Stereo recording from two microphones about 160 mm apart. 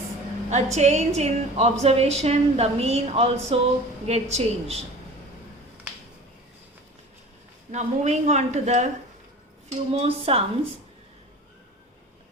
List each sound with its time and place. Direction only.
0.5 s a woman's voice: 45° right (ahead or behind)
7.7 s a woman's voice: 45° right (ahead or behind)
9.9 s a woman's voice: 40° right (ahead or behind)